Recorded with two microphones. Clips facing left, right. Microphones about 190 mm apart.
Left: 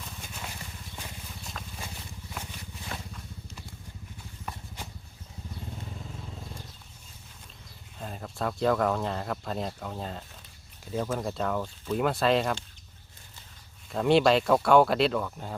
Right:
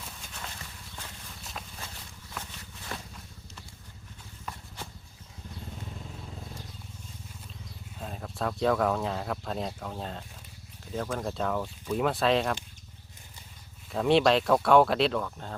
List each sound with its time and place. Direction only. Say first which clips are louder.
0.3 s a sound: left 1 dB; 10° left (ahead or behind)
7.9 s speech: left 1 dB; centre (ahead or behind)
13.9 s speech: left 1 dB; centre (ahead or behind)